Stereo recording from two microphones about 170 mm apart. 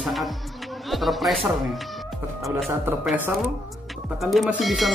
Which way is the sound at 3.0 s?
10° right (ahead or behind).